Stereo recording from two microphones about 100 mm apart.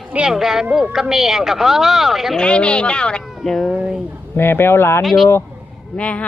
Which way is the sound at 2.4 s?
10° left (ahead or behind).